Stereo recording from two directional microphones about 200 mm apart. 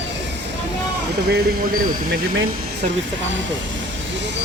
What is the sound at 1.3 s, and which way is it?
Speech, 50° right (ahead or behind).